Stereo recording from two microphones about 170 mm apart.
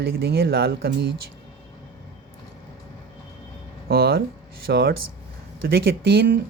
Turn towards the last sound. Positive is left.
turn(degrees=-65)  # may be behind; listen again after turning